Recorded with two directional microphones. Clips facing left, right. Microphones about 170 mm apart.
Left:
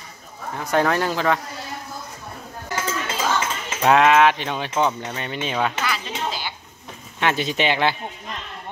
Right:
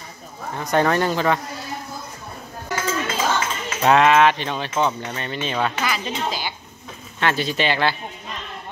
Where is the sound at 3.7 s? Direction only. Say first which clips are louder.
Even; 5° left (ahead or behind).